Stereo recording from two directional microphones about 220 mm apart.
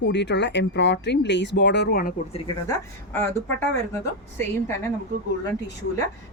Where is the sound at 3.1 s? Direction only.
10° left (ahead or behind).